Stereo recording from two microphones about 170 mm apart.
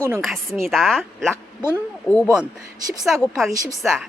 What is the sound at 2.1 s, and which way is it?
Speech, 15° left (ahead or behind).